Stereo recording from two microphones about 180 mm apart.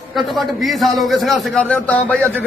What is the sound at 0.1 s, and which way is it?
A man's voice, centre (ahead or behind).